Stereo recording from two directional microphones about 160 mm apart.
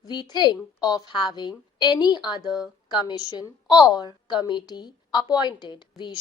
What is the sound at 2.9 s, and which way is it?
A woman's voice, 25° left (ahead or behind).